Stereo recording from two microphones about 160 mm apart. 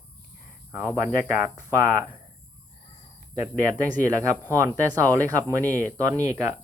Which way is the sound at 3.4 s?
15° right (ahead or behind).